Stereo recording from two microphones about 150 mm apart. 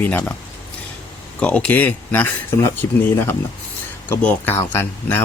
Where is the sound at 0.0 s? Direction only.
10° left (ahead or behind).